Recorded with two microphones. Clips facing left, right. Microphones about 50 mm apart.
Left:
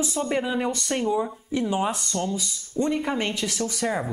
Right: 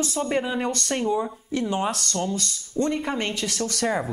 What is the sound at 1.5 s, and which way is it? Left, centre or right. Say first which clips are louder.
Speech: even; centre.